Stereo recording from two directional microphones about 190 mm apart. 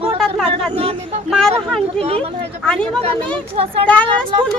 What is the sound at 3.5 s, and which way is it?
Speech, 30° right (ahead or behind).